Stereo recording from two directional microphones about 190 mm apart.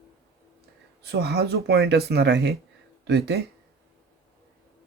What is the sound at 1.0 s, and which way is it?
Speech, 60° right (ahead or behind).